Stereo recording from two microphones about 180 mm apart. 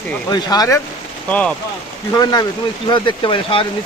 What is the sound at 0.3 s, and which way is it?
Speech, 20° left (ahead or behind).